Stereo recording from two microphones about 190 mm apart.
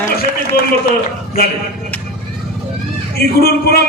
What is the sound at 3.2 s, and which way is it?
Speech, 55° left (ahead or behind).